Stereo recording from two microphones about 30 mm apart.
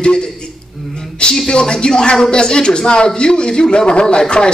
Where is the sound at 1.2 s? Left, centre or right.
Left.